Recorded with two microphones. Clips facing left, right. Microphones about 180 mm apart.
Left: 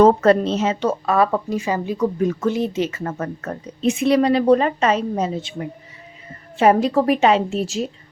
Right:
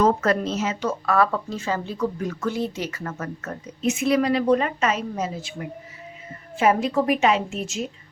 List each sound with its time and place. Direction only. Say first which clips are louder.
0.0 s a woman's voice: left 7 dB; 30° left (ahead or behind)